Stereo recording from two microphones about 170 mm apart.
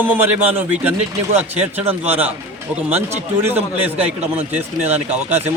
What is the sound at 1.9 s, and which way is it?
Speech, 10° right (ahead or behind).